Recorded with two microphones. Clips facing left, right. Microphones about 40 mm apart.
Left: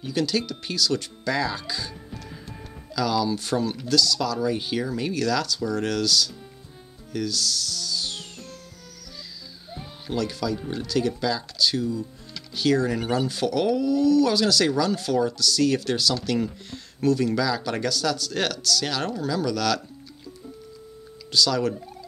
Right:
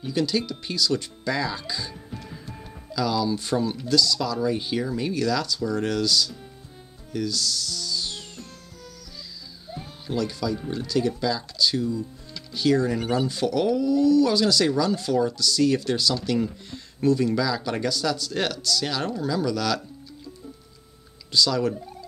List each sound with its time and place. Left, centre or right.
0.0 s speech: centre
2.9 s speech: centre
9.7 s a sound: centre
10.1 s speech: centre
21.3 s speech: centre